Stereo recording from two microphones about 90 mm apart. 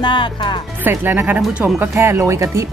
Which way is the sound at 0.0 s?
60° left (ahead or behind).